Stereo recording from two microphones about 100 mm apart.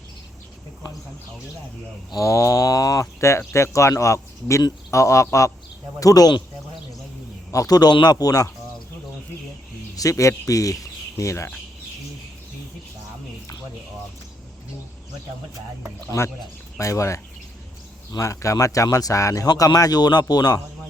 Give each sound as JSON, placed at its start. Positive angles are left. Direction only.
{"t": 2.1, "sound": "speech", "side_deg": 30}
{"t": 7.5, "sound": "speech", "side_deg": 35}
{"t": 9.9, "sound": "speech", "side_deg": 35}
{"t": 16.1, "sound": "speech", "side_deg": 40}